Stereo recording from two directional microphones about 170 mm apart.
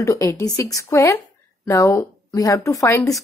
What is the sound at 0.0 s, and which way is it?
Speech, 15° left (ahead or behind).